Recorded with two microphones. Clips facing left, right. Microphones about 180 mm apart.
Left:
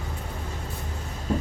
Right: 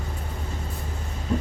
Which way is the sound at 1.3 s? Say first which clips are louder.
Even; 40° left (ahead or behind).